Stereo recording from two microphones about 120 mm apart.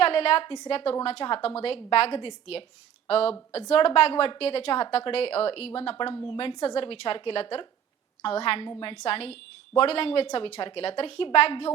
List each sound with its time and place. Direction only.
0.0 s a woman's voice: 55° left (ahead or behind)